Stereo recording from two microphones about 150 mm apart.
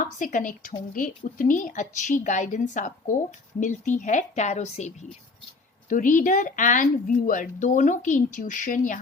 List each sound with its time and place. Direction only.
0.0 s speech: 55° left (ahead or behind)
5.9 s speech: 60° left (ahead or behind)